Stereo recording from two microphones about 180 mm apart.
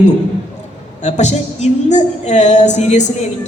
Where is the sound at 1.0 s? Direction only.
40° left (ahead or behind).